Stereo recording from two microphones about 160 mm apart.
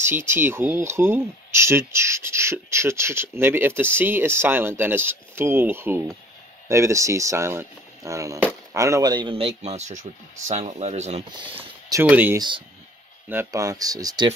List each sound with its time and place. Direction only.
0.0 s speech: 15° right (ahead or behind); by 11.2 s 45° right (ahead or behind)
11.5 s speech: 10° right (ahead or behind)
12.4 s speech: 30° right (ahead or behind)
13.3 s speech: 15° right (ahead or behind)